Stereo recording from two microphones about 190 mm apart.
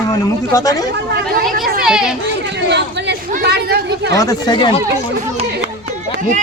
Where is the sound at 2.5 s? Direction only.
65° right (ahead or behind).